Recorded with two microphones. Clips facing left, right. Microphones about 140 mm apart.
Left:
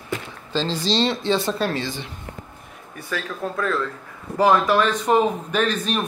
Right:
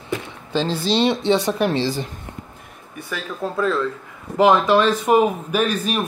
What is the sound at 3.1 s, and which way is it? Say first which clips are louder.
Speech: right 1 dB; 15° right (ahead or behind).